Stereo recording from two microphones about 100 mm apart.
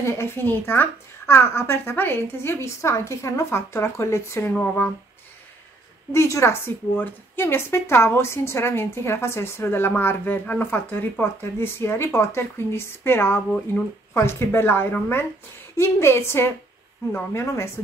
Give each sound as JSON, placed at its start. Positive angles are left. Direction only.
{"t": 0.0, "sound": "a woman's voice", "side_deg": 25}
{"t": 6.1, "sound": "a woman's voice", "side_deg": 30}